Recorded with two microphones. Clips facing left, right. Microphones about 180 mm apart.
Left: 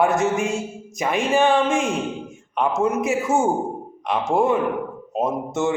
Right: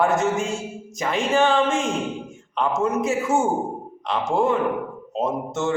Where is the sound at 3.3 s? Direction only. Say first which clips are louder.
Left 1 dB; 45° left (ahead or behind).